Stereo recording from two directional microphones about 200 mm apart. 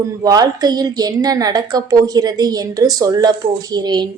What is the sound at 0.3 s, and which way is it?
A woman's voice, 20° right (ahead or behind).